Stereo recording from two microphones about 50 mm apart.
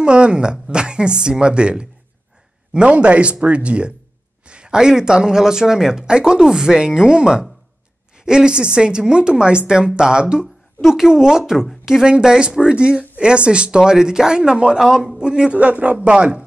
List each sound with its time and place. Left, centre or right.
0.0 s speech: centre